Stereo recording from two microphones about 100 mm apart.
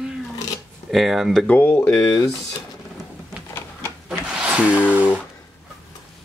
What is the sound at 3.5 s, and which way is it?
Printer, 25° left (ahead or behind).